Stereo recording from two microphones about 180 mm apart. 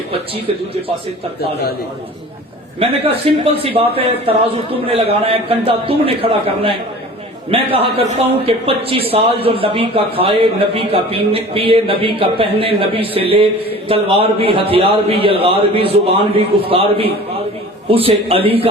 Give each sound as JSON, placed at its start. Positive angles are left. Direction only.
{"t": 1.4, "sound": "a man's voice", "side_deg": 65}
{"t": 2.8, "sound": "a man's voice", "side_deg": -30}
{"t": 7.5, "sound": "a man's voice", "side_deg": -30}